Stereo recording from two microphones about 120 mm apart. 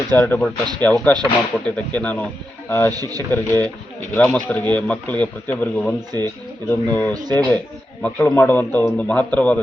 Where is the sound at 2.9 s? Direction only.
30° right (ahead or behind).